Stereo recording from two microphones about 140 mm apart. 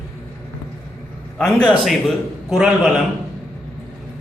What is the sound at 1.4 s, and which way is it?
A man's voice, 5° left (ahead or behind).